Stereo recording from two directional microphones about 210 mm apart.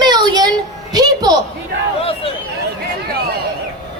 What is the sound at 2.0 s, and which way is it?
Speech, 25° left (ahead or behind).